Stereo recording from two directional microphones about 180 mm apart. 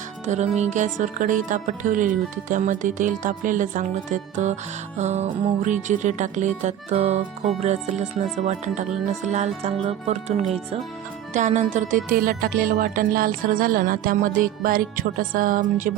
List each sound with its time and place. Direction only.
0.3 s speech: 40° right (ahead or behind)
4.9 s music: 40° right (ahead or behind)
11.3 s speech: 45° right (ahead or behind)